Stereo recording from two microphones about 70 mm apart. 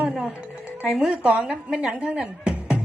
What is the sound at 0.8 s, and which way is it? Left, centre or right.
Speech, centre.